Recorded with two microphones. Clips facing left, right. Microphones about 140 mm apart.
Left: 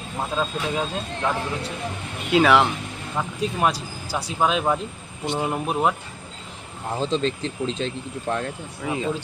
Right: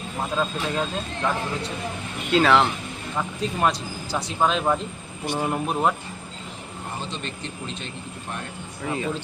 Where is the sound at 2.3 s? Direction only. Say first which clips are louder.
Left 1 dB; 10° left (ahead or behind).